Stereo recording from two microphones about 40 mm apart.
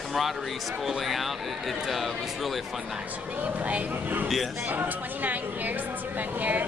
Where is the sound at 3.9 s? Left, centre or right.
Right.